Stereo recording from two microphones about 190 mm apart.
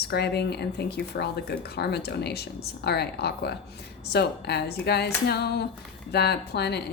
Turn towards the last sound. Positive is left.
turn(degrees=60)  # may be behind; listen again after turning